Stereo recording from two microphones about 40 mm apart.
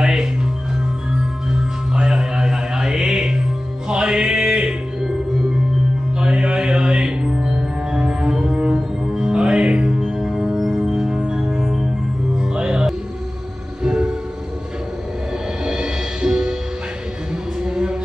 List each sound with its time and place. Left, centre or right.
0.0 s music: centre
6.1 s mantra: centre
11.6 s music: centre
13.8 s train: centre
15.6 s music: centre